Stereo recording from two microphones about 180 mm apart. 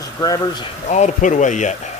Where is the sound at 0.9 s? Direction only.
40° left (ahead or behind).